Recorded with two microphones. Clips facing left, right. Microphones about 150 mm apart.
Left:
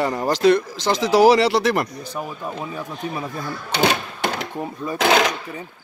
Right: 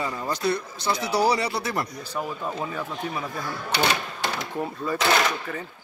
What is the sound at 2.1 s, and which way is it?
Speech, 15° left (ahead or behind).